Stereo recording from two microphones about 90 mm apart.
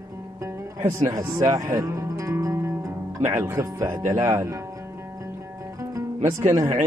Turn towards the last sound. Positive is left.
turn(degrees=-35)  # may be behind; listen again after turning